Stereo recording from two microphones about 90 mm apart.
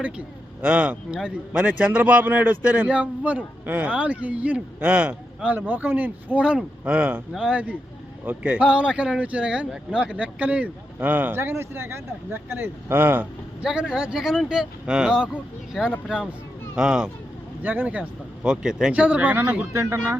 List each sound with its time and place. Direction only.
0.0 s speech: 15° right (ahead or behind)
13.6 s speech: 10° right (ahead or behind)
17.6 s speech: 20° right (ahead or behind)
19.7 s speech: 30° right (ahead or behind)